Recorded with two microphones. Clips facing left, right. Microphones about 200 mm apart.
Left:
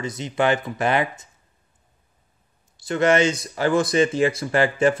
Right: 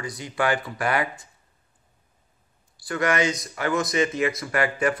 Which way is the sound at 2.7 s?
25° left (ahead or behind).